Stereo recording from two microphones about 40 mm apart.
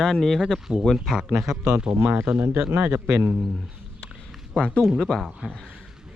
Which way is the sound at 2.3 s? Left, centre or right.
Right.